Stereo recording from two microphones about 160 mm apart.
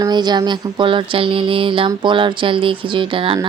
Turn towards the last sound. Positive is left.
turn(degrees=-35)  # may be behind; listen again after turning